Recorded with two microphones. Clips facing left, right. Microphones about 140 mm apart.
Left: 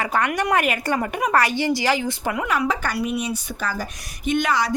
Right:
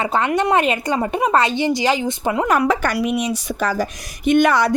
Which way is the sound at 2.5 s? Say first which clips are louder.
Right 6 dB; 60° right (ahead or behind).